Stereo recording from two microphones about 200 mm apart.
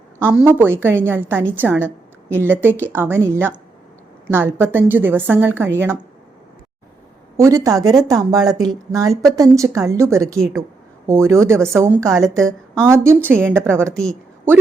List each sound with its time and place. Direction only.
0.2 s a woman's voice: 10° right (ahead or behind)
7.3 s a woman's voice: 15° right (ahead or behind)
13.9 s a woman's voice: 5° left (ahead or behind)